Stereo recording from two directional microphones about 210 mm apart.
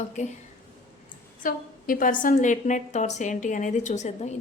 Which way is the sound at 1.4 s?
40° left (ahead or behind).